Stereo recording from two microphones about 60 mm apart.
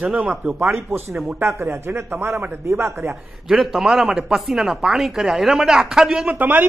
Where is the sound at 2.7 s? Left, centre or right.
Right.